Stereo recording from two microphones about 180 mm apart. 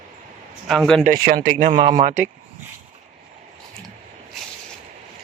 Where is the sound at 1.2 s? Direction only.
50° right (ahead or behind).